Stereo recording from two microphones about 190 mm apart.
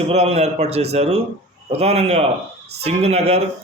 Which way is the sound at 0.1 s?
35° right (ahead or behind).